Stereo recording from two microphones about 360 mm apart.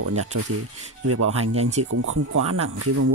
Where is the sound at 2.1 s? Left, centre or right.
Right.